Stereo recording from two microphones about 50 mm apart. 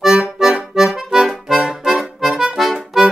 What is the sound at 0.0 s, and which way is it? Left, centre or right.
Accordion, centre.